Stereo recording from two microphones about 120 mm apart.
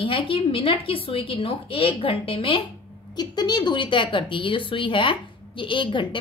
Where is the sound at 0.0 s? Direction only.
45° left (ahead or behind).